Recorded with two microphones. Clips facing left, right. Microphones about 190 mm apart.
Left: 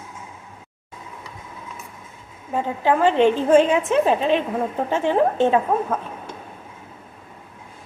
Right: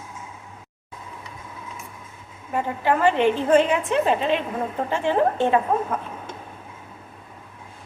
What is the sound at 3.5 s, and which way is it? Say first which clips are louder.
A woman's voice: left 3 dB; 20° left (ahead or behind).